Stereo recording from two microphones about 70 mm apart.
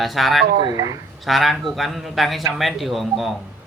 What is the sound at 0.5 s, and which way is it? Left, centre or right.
Speech, right.